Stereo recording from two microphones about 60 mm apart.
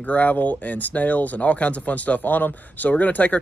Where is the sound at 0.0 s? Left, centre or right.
Left.